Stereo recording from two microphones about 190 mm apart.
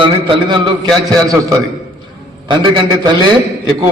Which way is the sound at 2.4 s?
25° right (ahead or behind).